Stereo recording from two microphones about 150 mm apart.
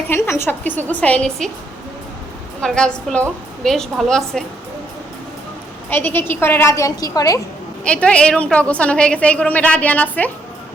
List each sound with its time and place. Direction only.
0.1 s a woman's voice: 20° left (ahead or behind)
2.6 s a woman's voice: 5° left (ahead or behind)
5.9 s a woman's voice: 15° left (ahead or behind)
7.9 s a woman's voice: 10° left (ahead or behind)